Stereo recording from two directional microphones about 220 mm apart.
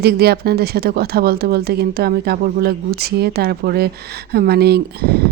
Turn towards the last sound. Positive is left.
turn(degrees=-45)  # may be behind; listen again after turning